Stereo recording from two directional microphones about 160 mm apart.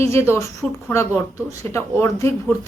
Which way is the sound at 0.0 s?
15° left (ahead or behind).